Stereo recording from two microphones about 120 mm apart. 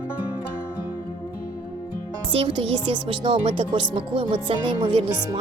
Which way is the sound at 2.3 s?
45° right (ahead or behind).